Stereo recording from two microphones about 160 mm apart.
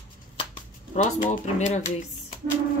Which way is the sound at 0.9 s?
50° left (ahead or behind).